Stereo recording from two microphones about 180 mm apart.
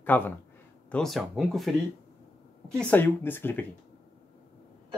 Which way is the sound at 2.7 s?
10° left (ahead or behind).